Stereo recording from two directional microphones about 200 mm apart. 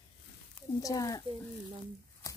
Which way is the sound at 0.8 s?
15° left (ahead or behind).